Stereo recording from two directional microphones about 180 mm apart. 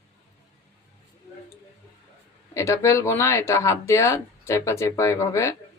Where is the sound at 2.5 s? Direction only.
15° left (ahead or behind).